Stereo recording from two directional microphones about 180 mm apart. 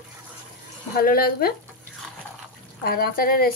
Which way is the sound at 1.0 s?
55° left (ahead or behind).